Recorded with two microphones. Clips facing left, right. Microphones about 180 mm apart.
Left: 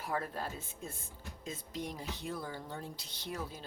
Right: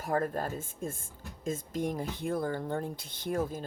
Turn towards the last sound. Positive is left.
turn(degrees=-50)  # may be behind; listen again after turning